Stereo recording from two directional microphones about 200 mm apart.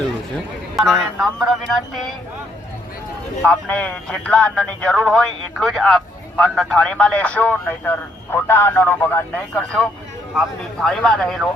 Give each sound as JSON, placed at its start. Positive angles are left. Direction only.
{"t": 0.8, "sound": "speech", "side_deg": 0}
{"t": 3.4, "sound": "speech", "side_deg": 5}